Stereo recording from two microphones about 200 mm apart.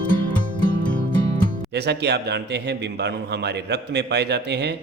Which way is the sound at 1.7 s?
55° right (ahead or behind).